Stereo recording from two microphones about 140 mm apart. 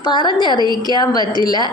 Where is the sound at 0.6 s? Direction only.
30° right (ahead or behind).